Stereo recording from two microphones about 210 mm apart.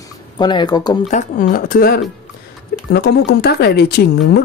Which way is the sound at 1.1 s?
40° left (ahead or behind).